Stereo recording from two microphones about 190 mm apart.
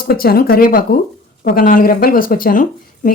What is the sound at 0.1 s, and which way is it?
Speech, 50° left (ahead or behind).